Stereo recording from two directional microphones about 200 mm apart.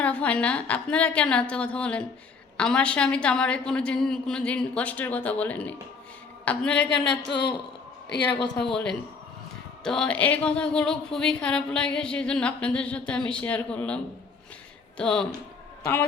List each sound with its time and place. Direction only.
0.0 s speech: 5° left (ahead or behind)
7.3 s a woman's voice: 60° left (ahead or behind)
8.5 s speech: 5° left (ahead or behind)